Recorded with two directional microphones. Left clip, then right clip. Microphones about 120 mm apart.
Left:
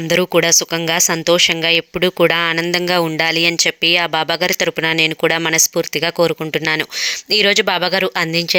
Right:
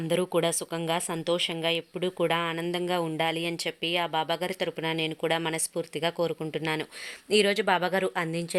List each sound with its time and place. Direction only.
0.1 s speech: 30° left (ahead or behind)